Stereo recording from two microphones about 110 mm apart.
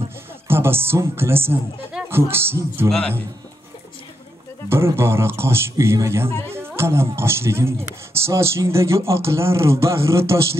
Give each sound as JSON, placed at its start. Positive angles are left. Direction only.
{"t": 0.5, "sound": "speech", "side_deg": -20}
{"t": 4.6, "sound": "speech", "side_deg": -25}
{"t": 6.5, "sound": "music", "side_deg": -20}
{"t": 7.2, "sound": "speech", "side_deg": -25}